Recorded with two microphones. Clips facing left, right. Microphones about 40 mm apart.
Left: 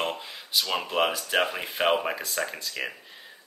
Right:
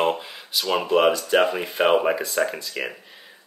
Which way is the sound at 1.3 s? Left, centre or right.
Centre.